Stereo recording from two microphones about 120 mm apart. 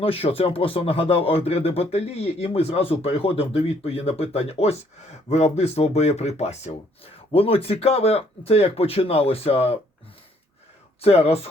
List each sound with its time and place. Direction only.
0.0 s speech: 55° left (ahead or behind)
11.0 s speech: 55° left (ahead or behind)